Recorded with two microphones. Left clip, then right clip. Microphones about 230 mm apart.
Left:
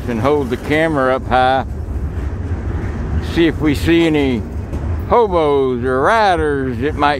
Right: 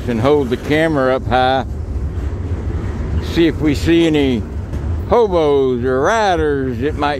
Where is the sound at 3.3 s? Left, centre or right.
Centre.